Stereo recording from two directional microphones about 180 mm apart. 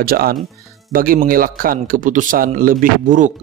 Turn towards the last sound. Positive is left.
turn(degrees=-45)  # may be behind; listen again after turning